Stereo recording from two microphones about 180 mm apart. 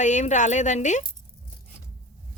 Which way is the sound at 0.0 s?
40° left (ahead or behind).